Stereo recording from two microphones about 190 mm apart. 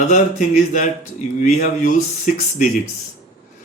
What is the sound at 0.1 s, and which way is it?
Speech, 40° left (ahead or behind).